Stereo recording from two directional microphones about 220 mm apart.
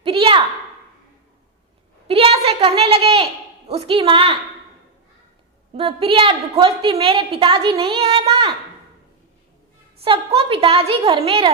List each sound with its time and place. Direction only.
0.0 s a sound: 25° right (ahead or behind)
2.0 s a woman's voice: 25° right (ahead or behind)
5.7 s a woman's voice: 25° right (ahead or behind)
10.0 s a woman's voice: 25° right (ahead or behind)